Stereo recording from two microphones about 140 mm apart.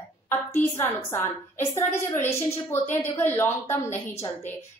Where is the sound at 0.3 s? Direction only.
15° left (ahead or behind).